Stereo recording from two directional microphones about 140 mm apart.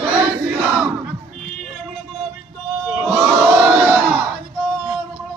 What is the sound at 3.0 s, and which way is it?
Crowd, 5° right (ahead or behind).